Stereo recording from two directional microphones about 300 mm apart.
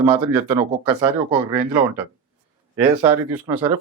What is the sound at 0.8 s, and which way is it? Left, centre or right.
Speech, centre.